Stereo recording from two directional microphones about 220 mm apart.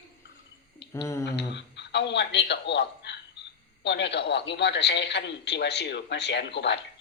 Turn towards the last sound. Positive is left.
turn(degrees=50)  # may be behind; listen again after turning